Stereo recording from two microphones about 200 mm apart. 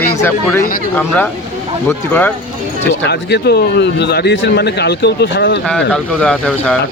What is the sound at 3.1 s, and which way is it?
Speech, 55° left (ahead or behind).